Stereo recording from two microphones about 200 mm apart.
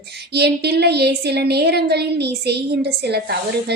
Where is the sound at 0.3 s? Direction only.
55° right (ahead or behind).